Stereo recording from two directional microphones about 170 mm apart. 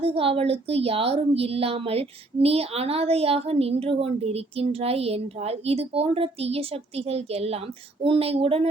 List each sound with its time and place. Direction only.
0.0 s speech: 35° right (ahead or behind)